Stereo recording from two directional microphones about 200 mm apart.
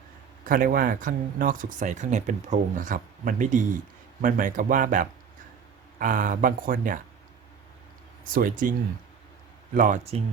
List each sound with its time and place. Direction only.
0.4 s speech: 45° right (ahead or behind)
8.3 s speech: 45° right (ahead or behind)
9.7 s speech: 40° right (ahead or behind)